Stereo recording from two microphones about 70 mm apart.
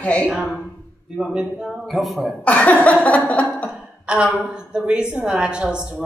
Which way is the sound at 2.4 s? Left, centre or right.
Centre.